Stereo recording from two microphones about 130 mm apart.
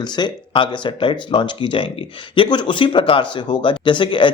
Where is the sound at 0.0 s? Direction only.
35° left (ahead or behind).